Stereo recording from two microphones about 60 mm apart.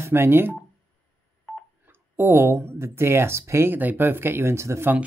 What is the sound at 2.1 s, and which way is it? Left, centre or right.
Speech, right.